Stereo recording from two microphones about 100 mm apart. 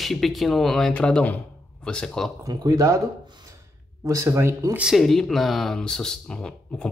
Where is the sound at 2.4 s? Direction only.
40° right (ahead or behind).